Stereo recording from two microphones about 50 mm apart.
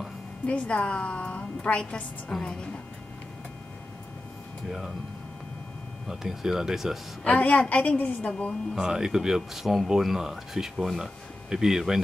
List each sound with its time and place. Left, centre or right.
0.5 s a woman's voice: left
4.6 s speech: centre
6.0 s speech: centre
7.2 s a woman's voice: left
8.7 s speech: centre